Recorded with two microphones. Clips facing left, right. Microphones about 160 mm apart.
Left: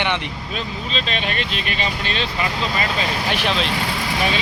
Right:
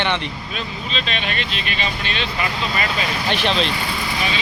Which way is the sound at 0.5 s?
35° left (ahead or behind).